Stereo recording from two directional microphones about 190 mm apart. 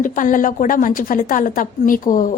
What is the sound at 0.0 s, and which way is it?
A woman's voice, 45° left (ahead or behind).